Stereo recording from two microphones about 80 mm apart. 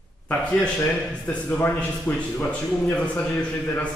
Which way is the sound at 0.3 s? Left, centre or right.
Centre.